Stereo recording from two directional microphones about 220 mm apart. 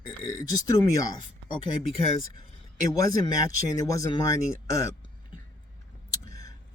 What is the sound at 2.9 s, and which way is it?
Speech, 15° left (ahead or behind).